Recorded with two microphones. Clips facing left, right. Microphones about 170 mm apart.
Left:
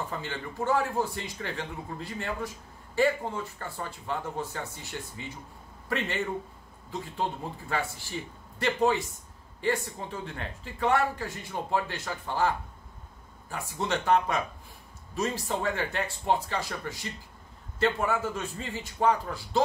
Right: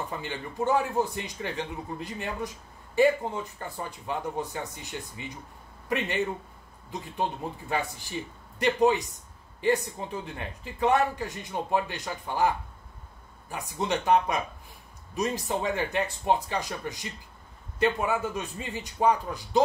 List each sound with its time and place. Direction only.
0.1 s speech: 15° right (ahead or behind)